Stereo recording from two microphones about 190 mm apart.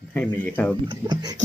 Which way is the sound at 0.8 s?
20° right (ahead or behind).